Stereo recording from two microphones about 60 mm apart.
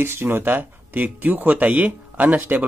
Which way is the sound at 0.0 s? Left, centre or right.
Right.